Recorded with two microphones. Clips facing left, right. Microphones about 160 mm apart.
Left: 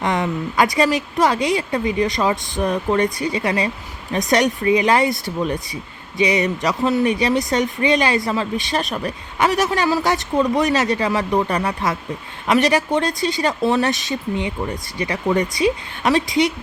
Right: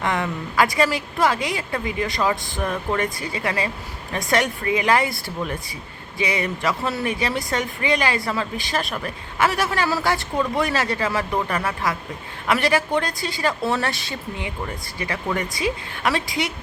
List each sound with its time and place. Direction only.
0.0 s speech: 20° left (ahead or behind)